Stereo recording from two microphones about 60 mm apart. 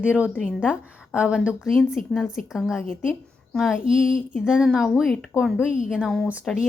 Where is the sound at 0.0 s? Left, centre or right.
Right.